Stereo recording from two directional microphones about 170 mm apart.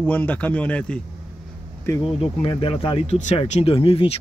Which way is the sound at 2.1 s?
30° left (ahead or behind).